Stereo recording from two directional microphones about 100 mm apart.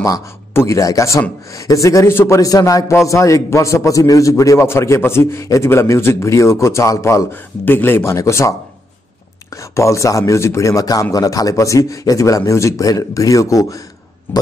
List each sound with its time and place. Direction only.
0.0 s a man's voice: 25° left (ahead or behind)
14.3 s speech: 20° left (ahead or behind)